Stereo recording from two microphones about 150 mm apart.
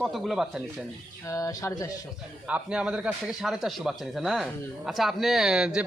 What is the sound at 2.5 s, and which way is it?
A man's voice, 5° right (ahead or behind).